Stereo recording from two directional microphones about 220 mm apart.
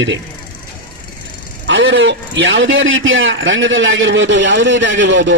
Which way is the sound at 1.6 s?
55° right (ahead or behind).